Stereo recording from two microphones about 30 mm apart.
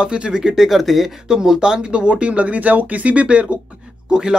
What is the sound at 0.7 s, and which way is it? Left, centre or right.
Speech, centre.